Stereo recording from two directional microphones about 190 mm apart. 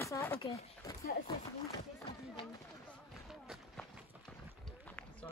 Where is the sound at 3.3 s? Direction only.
Centre (ahead or behind).